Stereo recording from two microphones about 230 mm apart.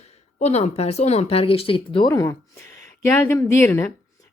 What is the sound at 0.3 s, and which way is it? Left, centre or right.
A woman's voice, left.